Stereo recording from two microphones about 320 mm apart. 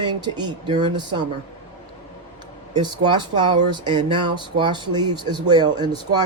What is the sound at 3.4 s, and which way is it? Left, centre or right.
Speech, centre.